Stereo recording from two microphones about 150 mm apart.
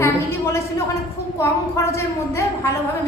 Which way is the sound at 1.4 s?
20° left (ahead or behind).